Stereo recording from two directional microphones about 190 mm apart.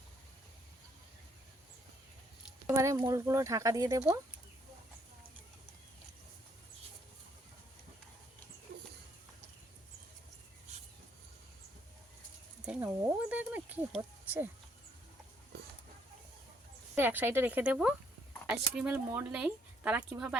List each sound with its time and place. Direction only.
2.6 s speech: 15° right (ahead or behind)
12.6 s a sound: 10° right (ahead or behind)
16.9 s speech: 10° right (ahead or behind)